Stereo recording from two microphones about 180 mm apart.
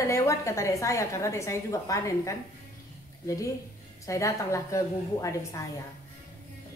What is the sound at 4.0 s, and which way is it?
A woman's voice, 15° left (ahead or behind).